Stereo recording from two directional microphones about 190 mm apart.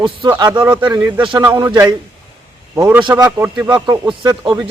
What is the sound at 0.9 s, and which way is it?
Speech, 10° right (ahead or behind).